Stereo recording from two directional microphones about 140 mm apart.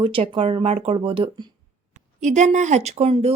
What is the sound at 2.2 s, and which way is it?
Speech, 60° right (ahead or behind).